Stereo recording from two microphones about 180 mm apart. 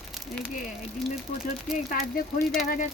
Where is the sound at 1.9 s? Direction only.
55° left (ahead or behind).